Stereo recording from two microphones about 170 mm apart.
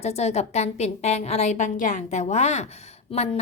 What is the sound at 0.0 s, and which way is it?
A woman's voice, 40° left (ahead or behind).